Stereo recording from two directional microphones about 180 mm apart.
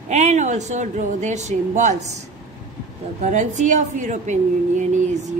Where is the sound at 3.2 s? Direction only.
40° right (ahead or behind).